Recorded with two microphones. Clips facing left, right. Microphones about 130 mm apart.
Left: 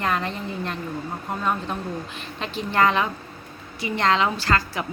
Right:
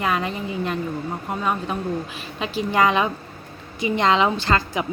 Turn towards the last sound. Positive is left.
turn(degrees=-20)  # may be behind; listen again after turning